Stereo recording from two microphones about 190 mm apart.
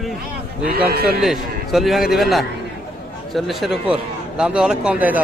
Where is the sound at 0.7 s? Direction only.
55° right (ahead or behind).